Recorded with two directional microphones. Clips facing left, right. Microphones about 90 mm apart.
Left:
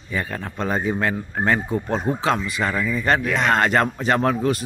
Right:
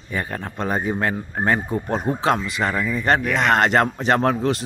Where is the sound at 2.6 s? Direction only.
25° right (ahead or behind).